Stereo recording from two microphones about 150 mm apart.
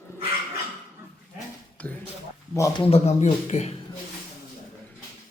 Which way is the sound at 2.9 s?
45° left (ahead or behind).